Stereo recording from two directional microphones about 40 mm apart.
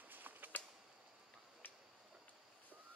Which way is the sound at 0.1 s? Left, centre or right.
Right.